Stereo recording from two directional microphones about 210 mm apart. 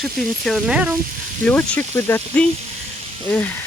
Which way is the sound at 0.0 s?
Centre (ahead or behind).